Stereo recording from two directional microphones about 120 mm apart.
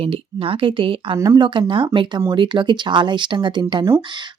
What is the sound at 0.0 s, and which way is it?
Speech, 50° right (ahead or behind).